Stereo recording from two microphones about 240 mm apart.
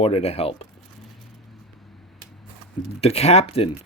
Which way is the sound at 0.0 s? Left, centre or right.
Left.